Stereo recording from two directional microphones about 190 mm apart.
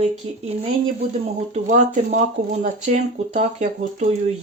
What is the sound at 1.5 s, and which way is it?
Speech, 40° right (ahead or behind).